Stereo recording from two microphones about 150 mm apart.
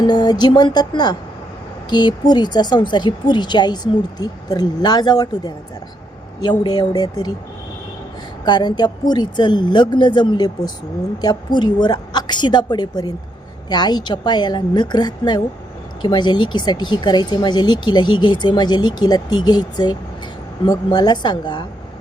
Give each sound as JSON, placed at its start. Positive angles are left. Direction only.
{"t": 0.1, "sound": "speech", "side_deg": 30}
{"t": 8.4, "sound": "speech", "side_deg": 30}